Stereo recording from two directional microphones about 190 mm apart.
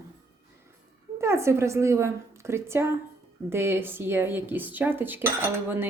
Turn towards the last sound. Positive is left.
turn(degrees=-10)  # may be behind; listen again after turning